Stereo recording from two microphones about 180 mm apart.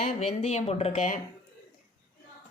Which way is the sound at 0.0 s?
40° left (ahead or behind).